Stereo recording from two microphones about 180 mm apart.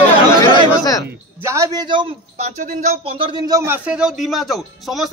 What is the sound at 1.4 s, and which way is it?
A man's voice, 15° right (ahead or behind).